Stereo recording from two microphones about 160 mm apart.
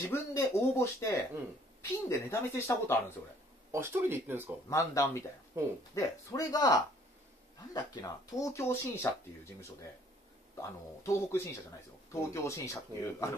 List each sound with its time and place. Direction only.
0.1 s speech: 15° left (ahead or behind)
3.7 s speech: 15° right (ahead or behind)
4.6 s speech: 20° left (ahead or behind)
5.5 s speech: 15° right (ahead or behind)
5.9 s speech: 20° left (ahead or behind)
10.5 s speech: 20° left (ahead or behind)